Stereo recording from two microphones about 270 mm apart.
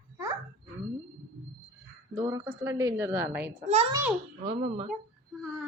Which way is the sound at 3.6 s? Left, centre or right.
Right.